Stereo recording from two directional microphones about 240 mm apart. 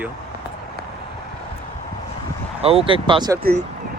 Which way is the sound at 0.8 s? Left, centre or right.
Right.